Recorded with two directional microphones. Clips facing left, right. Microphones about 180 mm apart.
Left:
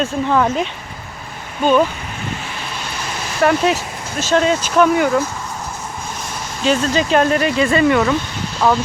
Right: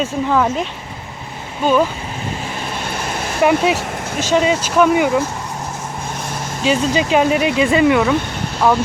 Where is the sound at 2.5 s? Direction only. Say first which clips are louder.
Right 4 dB; 50° right (ahead or behind).